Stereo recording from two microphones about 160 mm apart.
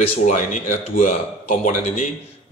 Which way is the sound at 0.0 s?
45° left (ahead or behind).